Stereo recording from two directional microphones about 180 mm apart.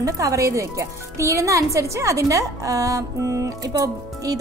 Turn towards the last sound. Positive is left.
turn(degrees=-20)  # may be behind; listen again after turning